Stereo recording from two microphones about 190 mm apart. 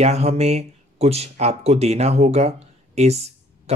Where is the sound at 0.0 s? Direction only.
35° right (ahead or behind).